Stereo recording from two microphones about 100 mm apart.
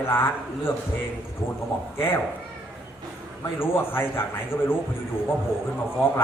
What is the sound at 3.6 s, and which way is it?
A man's voice, 25° left (ahead or behind).